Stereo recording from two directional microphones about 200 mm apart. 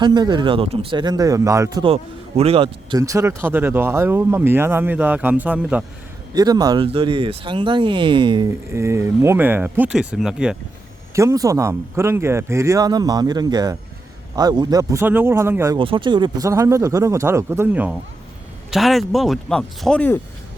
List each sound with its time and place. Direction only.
0.0 s speech: 20° right (ahead or behind)
1.9 s speech: 30° right (ahead or behind)
3.0 s speech: 15° right (ahead or behind)
6.3 s speech: 20° right (ahead or behind); by 10.6 s 5° right (ahead or behind)
11.1 s speech: 15° right (ahead or behind)
15.8 s speech: 25° right (ahead or behind); by 20.1 s 5° left (ahead or behind)